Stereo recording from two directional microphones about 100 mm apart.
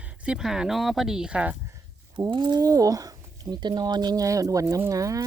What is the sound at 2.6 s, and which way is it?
Speech, 35° right (ahead or behind).